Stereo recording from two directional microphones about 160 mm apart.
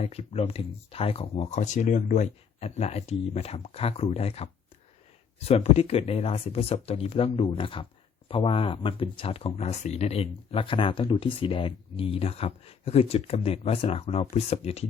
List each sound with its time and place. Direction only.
0.0 s speech: 40° left (ahead or behind)